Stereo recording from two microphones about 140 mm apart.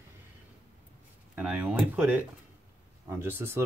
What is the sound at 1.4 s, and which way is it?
Speech, 10° right (ahead or behind).